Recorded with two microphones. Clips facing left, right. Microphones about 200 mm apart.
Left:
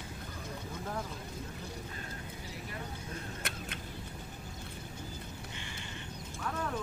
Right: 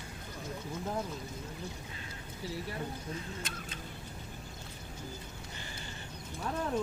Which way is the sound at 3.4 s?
65° left (ahead or behind).